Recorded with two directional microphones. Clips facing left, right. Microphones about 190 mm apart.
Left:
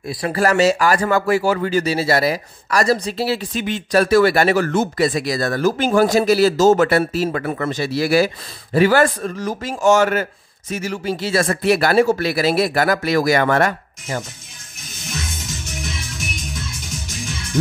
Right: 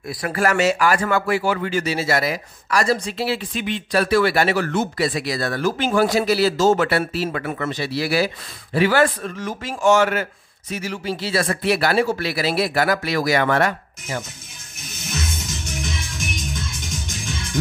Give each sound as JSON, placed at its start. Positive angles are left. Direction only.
{"t": 0.0, "sound": "speech", "side_deg": 25}